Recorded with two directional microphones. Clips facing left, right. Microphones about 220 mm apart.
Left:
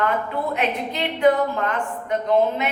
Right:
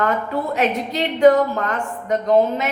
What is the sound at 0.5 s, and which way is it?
A woman's voice, 40° right (ahead or behind).